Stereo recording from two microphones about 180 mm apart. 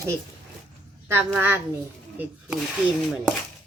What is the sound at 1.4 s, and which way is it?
Speech, 10° right (ahead or behind).